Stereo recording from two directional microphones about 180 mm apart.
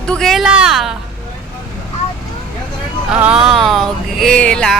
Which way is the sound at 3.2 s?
5° right (ahead or behind).